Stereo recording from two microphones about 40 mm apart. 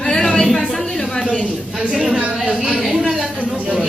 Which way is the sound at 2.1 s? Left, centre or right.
Right.